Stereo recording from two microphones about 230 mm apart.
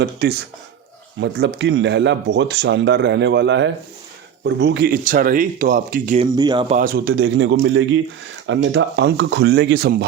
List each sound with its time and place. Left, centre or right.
0.0 s speech: right
1.5 s speech: right
6.3 s speech: centre
6.7 s speech: right
7.1 s speech: right